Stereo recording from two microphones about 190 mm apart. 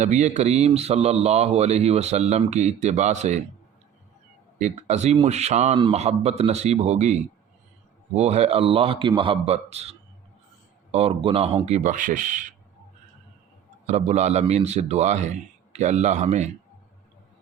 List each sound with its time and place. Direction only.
0.0 s a man's voice: 40° right (ahead or behind)
4.5 s a man's voice: 35° right (ahead or behind)
10.9 s a man's voice: 30° right (ahead or behind)
13.8 s a man's voice: 35° right (ahead or behind)